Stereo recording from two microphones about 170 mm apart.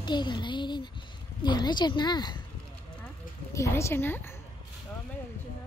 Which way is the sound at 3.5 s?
15° left (ahead or behind).